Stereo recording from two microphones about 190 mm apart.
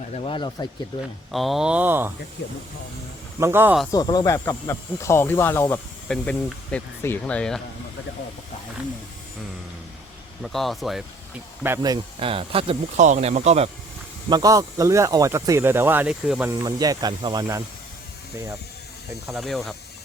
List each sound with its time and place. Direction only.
0.1 s speech: 30° left (ahead or behind)
1.3 s speech: centre (ahead or behind)
2.4 s speech: 60° left (ahead or behind)
3.4 s speech: 10° right (ahead or behind)
3.9 s speech: 20° left (ahead or behind); by 7.6 s 5° left (ahead or behind)
10.4 s speech: centre (ahead or behind)
11.6 s speech: 15° right (ahead or behind); by 13.7 s 35° right (ahead or behind)
14.3 s speech: 20° right (ahead or behind); by 16.5 s 5° right (ahead or behind)
16.5 s speech: 20° right (ahead or behind)
19.3 s speech: centre (ahead or behind)